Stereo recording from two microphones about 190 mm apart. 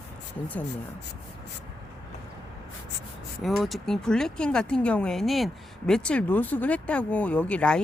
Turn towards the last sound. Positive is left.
turn(degrees=5)  # may be behind; listen again after turning